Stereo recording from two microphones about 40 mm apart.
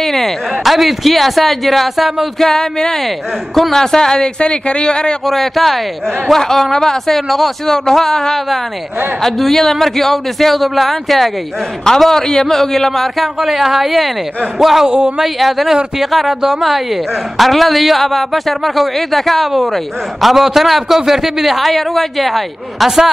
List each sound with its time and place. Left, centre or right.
0.0 s a woman's voice: centre
2.3 s speech: centre
5.2 s a woman's voice: centre
13.5 s a woman's voice: centre
14.9 s speech: right
15.2 s a woman's voice: centre